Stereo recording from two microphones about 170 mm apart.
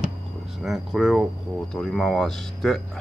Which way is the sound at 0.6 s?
Centre (ahead or behind).